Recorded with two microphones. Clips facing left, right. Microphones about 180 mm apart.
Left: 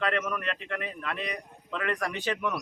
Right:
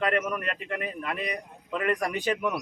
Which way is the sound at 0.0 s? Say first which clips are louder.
Right 2 dB; 10° right (ahead or behind).